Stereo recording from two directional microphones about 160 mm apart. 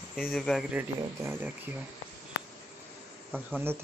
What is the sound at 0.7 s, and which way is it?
Speech, 10° right (ahead or behind).